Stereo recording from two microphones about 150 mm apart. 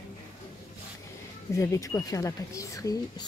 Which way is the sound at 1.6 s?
20° left (ahead or behind).